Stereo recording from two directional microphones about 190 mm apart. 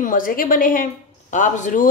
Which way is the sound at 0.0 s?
45° left (ahead or behind).